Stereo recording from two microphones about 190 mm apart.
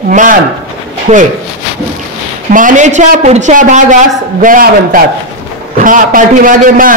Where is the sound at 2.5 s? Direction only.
40° right (ahead or behind).